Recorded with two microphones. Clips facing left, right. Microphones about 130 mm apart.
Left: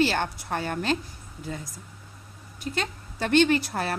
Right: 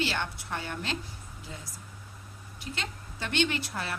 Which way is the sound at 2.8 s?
45° left (ahead or behind).